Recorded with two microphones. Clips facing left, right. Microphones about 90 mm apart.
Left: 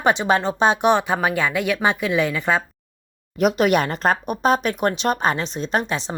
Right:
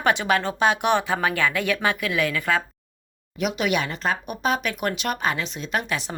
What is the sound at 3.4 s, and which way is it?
A woman's voice, 40° left (ahead or behind).